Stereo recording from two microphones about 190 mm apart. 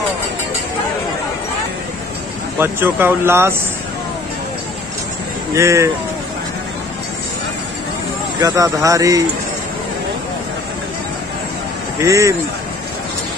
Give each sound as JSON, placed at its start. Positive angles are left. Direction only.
{"t": 2.6, "sound": "speech", "side_deg": -10}
{"t": 5.5, "sound": "speech", "side_deg": -15}
{"t": 8.4, "sound": "speech", "side_deg": -20}
{"t": 12.0, "sound": "speech", "side_deg": -15}